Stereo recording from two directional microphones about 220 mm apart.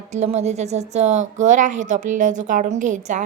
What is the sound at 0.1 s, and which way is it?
A woman's voice, 30° right (ahead or behind).